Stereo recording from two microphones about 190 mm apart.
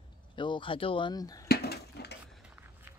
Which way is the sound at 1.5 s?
55° left (ahead or behind).